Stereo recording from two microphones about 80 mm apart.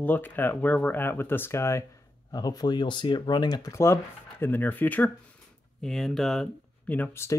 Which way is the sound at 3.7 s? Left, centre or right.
Left.